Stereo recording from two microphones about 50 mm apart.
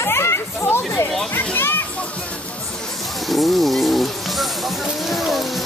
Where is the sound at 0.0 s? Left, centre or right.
Left.